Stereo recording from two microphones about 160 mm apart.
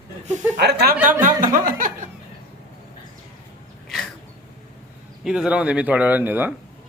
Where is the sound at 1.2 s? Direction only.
60° right (ahead or behind).